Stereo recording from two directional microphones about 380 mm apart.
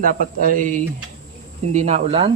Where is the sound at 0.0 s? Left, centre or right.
Right.